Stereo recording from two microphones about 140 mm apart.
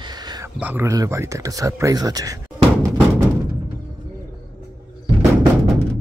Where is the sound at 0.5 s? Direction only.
15° right (ahead or behind).